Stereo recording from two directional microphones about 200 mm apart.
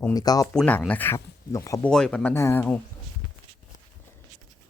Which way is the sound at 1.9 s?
5° left (ahead or behind).